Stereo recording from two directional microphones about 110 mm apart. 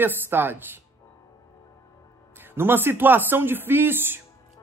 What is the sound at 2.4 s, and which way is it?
A man's voice, 20° right (ahead or behind).